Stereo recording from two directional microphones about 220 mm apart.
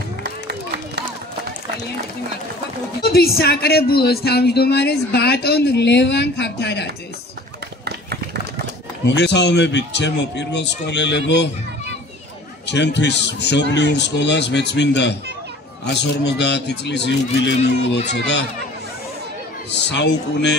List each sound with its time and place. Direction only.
3.0 s speech: 45° left (ahead or behind)
7.8 s run: 50° right (ahead or behind)
9.0 s speech: 50° left (ahead or behind)
12.6 s speech: 50° left (ahead or behind)
19.7 s speech: 50° left (ahead or behind)